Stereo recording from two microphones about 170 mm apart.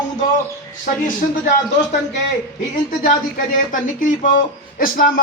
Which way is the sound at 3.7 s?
50° left (ahead or behind).